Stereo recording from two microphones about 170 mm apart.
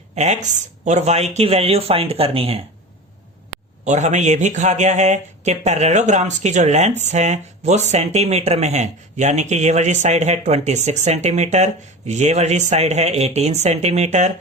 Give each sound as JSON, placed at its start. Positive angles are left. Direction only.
{"t": 0.2, "sound": "speech", "side_deg": -45}
{"t": 3.8, "sound": "speech", "side_deg": -45}